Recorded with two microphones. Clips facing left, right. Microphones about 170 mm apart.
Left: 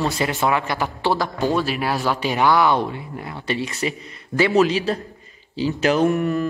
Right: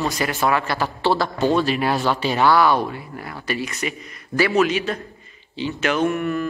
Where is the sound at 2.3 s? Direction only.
15° left (ahead or behind).